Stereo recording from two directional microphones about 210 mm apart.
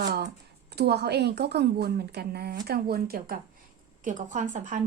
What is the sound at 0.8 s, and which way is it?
Speech, 50° right (ahead or behind).